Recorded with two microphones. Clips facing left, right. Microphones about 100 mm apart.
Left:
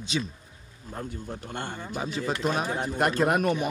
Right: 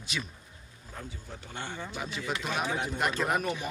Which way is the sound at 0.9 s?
50° left (ahead or behind).